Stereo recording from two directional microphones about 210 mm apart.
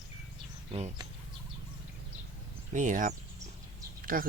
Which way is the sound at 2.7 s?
35° right (ahead or behind).